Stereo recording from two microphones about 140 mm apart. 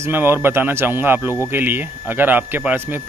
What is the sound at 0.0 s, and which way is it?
Speech, 15° right (ahead or behind).